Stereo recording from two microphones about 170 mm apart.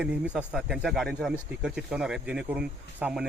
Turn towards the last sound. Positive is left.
turn(degrees=-5)  # may be behind; listen again after turning